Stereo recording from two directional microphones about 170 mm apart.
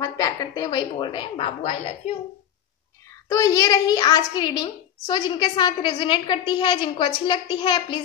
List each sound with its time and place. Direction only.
0.0 s a woman's voice: 20° left (ahead or behind)
3.3 s a child's voice: 20° left (ahead or behind)